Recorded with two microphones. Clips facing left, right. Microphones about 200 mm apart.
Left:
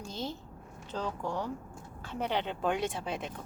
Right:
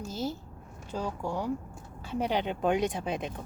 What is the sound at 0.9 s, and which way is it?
Speech, 10° right (ahead or behind).